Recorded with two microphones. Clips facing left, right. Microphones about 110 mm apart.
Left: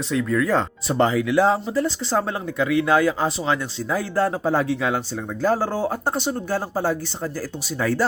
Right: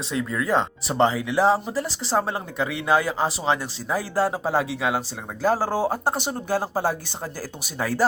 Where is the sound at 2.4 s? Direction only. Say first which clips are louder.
Left 5 dB; 15° right (ahead or behind).